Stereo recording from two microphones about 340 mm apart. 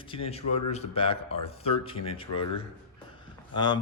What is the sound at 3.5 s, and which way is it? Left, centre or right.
Speech, centre.